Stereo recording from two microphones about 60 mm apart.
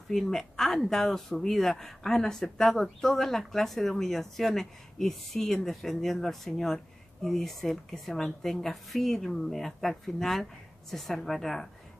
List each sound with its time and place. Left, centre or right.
0.1 s speech: centre